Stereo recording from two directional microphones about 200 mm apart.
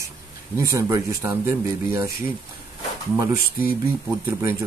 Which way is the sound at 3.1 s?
10° right (ahead or behind).